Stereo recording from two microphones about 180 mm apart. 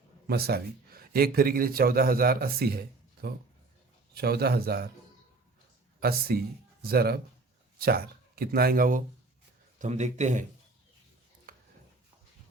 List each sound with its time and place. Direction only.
0.3 s speech: 60° right (ahead or behind)
6.0 s speech: 60° right (ahead or behind)
9.7 s speech: 40° right (ahead or behind)
11.5 s a sound: 55° right (ahead or behind)